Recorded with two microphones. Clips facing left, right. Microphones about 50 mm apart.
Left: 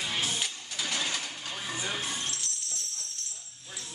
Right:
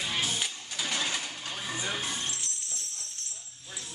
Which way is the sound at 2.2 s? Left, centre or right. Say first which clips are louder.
Even; right.